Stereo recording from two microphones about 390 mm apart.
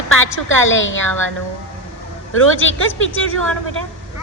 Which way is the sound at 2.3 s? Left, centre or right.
Left.